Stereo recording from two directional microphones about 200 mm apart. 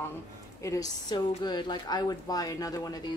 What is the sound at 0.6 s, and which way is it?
A woman's voice, 15° left (ahead or behind).